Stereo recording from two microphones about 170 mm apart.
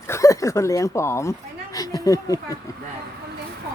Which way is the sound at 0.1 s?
20° left (ahead or behind).